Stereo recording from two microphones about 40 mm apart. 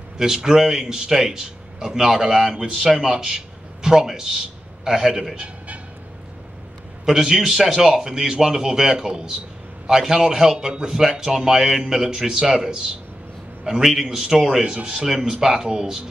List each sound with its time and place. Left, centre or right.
0.2 s a man's voice: centre
5.3 s a sound: right
7.1 s a man's voice: centre
14.6 s speech: right
15.0 s a man's voice: centre